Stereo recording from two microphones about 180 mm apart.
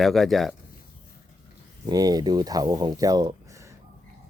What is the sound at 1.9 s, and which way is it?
Speech, 20° right (ahead or behind).